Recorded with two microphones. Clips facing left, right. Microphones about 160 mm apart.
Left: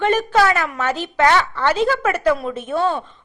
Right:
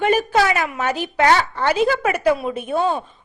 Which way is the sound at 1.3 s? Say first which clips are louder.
Left 2 dB; 45° right (ahead or behind).